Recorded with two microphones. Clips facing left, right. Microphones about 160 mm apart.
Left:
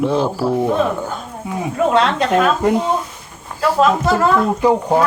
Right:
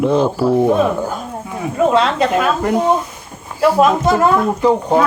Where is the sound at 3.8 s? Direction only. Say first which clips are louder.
Even; 20° right (ahead or behind).